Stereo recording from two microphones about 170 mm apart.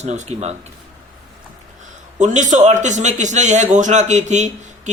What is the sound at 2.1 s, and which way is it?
A man's voice, 45° right (ahead or behind).